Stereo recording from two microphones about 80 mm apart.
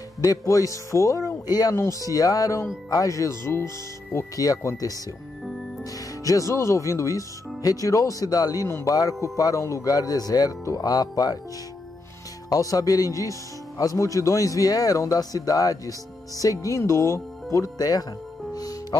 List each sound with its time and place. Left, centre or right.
0.2 s speech: left
6.2 s speech: left
8.6 s speech: left
8.9 s speech: left
12.4 s speech: left
18.5 s music: left